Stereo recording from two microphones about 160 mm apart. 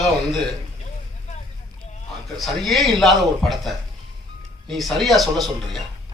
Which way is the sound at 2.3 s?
Centre (ahead or behind).